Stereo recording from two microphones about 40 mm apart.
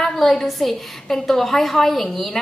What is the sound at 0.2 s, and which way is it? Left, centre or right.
A woman's voice, centre.